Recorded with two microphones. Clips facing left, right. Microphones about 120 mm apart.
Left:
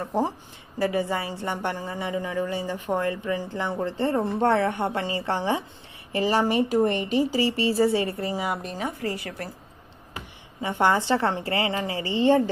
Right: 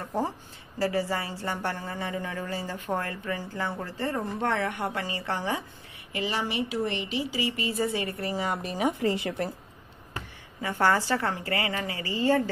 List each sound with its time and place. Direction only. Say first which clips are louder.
0.7 s a woman's voice: left 3 dB; 20° left (ahead or behind)
6.1 s speech: left 8 dB; 40° left (ahead or behind); by 8.5 s 25° left (ahead or behind)
8.7 s a woman's voice: right 3 dB; 20° right (ahead or behind)
10.1 s a woman's voice: left 1 dB; 20° left (ahead or behind)